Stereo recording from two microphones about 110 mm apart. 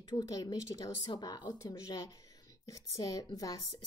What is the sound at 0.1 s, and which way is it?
A woman's voice, 35° left (ahead or behind).